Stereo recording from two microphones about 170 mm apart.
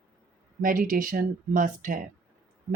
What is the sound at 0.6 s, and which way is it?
Speech, 55° right (ahead or behind).